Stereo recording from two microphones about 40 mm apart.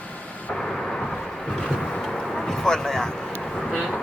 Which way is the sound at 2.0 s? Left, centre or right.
Centre.